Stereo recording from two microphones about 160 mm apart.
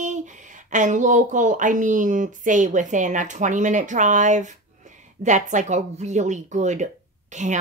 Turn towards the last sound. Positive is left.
turn(degrees=-50)  # may be behind; listen again after turning